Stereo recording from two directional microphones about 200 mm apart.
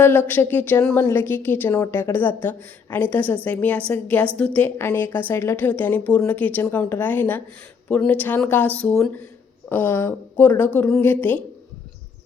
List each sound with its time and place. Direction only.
0.0 s a woman's voice: 10° left (ahead or behind)